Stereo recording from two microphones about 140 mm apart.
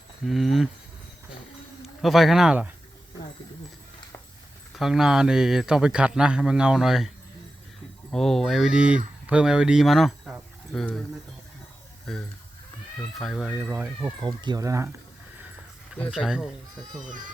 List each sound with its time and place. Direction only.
0.3 s a man's voice: centre (ahead or behind)
2.0 s a man's voice: centre (ahead or behind)
4.7 s a man's voice: centre (ahead or behind)
8.1 s a man's voice: centre (ahead or behind)
12.1 s a man's voice: centre (ahead or behind)
13.6 s speech: 10° right (ahead or behind)
14.2 s speech: 30° right (ahead or behind)
16.1 s a man's voice: 5° right (ahead or behind)